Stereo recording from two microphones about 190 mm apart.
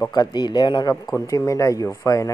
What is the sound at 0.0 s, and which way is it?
Speech, 20° left (ahead or behind).